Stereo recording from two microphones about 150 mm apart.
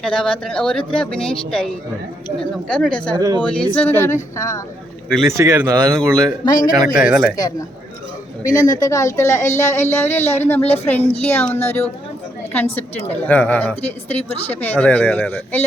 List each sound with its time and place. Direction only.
0.0 s speech: 5° left (ahead or behind)
3.2 s speech: 25° right (ahead or behind)
3.8 s speech: 15° left (ahead or behind)
5.2 s speech: 20° right (ahead or behind)
5.9 s speech: 5° left (ahead or behind)
6.4 s speech: 25° left (ahead or behind)
6.7 s speech: 5° right (ahead or behind)
8.5 s speech: 20° left (ahead or behind)